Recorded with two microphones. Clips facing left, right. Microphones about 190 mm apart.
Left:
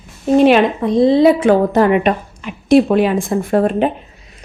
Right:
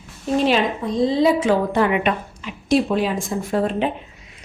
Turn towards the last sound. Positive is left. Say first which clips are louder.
# left 6 dB
turn(degrees=55)  # may be behind; listen again after turning